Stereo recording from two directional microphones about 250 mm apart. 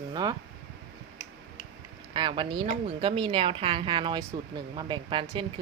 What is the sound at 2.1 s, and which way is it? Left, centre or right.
A woman's voice, centre.